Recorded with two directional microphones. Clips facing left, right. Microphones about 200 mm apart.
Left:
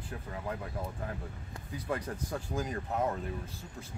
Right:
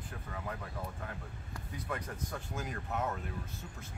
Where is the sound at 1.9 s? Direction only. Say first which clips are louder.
Left 5 dB; 30° left (ahead or behind).